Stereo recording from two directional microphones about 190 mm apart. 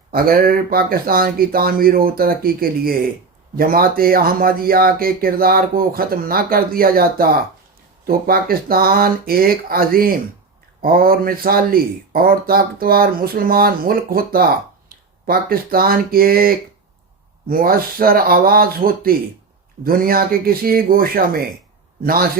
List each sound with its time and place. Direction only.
0.1 s speech: 50° right (ahead or behind)